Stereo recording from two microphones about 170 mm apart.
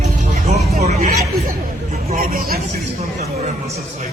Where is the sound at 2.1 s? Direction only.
55° right (ahead or behind).